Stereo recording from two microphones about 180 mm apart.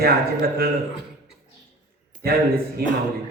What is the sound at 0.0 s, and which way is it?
Speech, 55° right (ahead or behind).